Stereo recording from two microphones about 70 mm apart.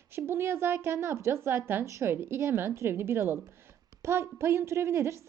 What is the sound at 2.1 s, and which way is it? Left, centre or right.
A woman's voice, right.